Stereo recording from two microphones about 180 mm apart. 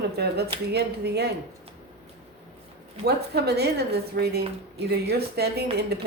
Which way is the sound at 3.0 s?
65° right (ahead or behind).